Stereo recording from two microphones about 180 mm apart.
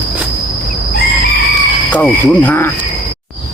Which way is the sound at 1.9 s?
10° left (ahead or behind).